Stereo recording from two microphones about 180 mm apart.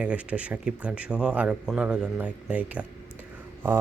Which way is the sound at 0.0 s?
5° right (ahead or behind).